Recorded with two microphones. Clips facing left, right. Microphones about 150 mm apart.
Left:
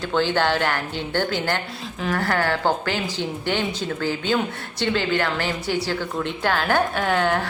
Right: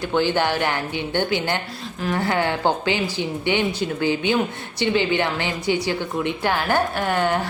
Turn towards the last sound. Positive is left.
turn(degrees=-10)  # may be behind; listen again after turning